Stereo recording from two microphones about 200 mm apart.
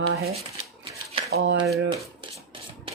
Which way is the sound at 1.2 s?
60° right (ahead or behind).